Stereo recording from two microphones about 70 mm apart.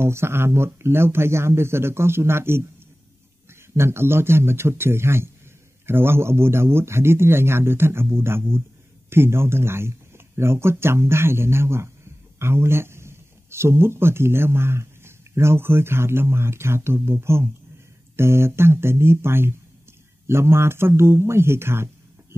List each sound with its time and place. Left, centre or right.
0.0 s speech: right
3.7 s speech: right